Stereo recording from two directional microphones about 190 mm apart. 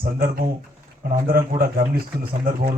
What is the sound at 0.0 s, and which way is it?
A man's voice, 50° right (ahead or behind).